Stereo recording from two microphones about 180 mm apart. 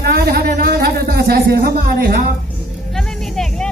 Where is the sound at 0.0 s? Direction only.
60° right (ahead or behind).